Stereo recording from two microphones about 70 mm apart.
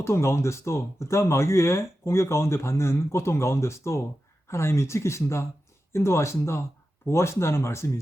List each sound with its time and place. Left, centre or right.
0.0 s speech: left